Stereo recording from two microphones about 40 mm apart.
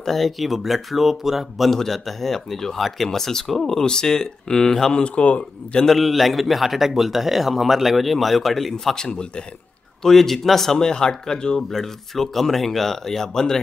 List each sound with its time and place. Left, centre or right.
0.0 s a man's voice: centre
1.8 s speech: centre
5.0 s a man's voice: left
5.9 s a man's voice: centre
8.9 s a man's voice: centre
10.0 s speech: centre
11.7 s speech: centre